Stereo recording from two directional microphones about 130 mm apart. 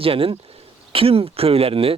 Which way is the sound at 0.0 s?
45° right (ahead or behind).